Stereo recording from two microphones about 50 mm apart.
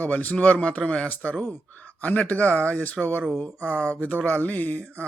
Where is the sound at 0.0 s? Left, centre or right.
Left.